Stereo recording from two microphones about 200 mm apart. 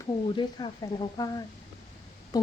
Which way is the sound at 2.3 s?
20° left (ahead or behind).